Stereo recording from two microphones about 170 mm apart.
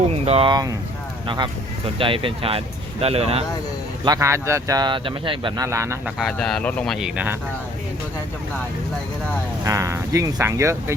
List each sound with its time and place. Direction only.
0.1 s speech: 35° right (ahead or behind)
2.0 s speech: 30° right (ahead or behind)
4.0 s speech: 20° right (ahead or behind)
5.6 s speech: 15° right (ahead or behind)
6.1 s speech: centre (ahead or behind)
9.6 s speech: 20° right (ahead or behind)